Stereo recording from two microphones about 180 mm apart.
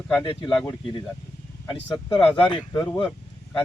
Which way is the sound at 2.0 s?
25° left (ahead or behind).